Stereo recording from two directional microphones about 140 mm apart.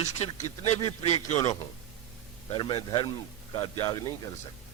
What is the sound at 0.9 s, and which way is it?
Speech, 50° left (ahead or behind).